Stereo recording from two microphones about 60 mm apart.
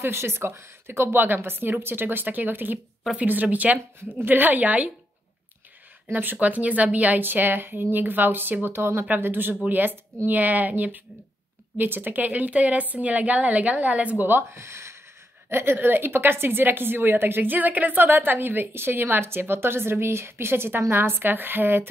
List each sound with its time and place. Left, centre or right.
0.0 s a woman's voice: right
6.3 s a woman's voice: right
14.2 s speech: right
15.5 s a woman's voice: right